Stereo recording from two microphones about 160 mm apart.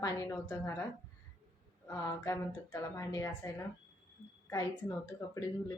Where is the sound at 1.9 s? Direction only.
15° left (ahead or behind).